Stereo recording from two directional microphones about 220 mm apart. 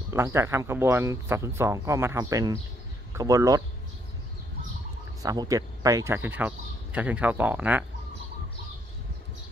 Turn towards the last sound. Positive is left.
turn(degrees=-10)  # may be behind; listen again after turning